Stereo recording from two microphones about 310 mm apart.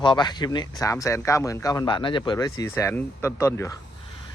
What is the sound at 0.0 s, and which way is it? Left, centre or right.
Speech, centre.